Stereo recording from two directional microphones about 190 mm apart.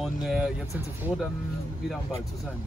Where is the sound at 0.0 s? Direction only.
Centre (ahead or behind).